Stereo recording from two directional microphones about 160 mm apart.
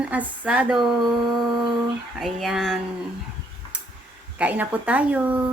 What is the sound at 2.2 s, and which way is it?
Speech, centre (ahead or behind).